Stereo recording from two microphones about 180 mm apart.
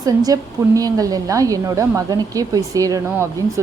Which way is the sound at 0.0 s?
20° right (ahead or behind).